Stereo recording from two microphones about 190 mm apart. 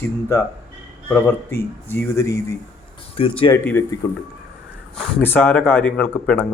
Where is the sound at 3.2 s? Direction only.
30° left (ahead or behind).